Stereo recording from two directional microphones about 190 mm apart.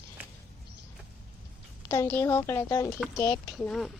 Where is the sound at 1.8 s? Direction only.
15° left (ahead or behind).